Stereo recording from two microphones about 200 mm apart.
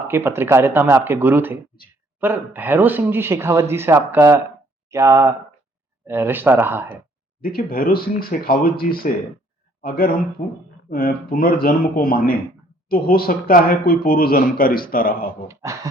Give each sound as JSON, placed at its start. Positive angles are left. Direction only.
{"t": 0.1, "sound": "speech", "side_deg": -10}
{"t": 7.4, "sound": "speech", "side_deg": 45}
{"t": 15.4, "sound": "speech", "side_deg": -15}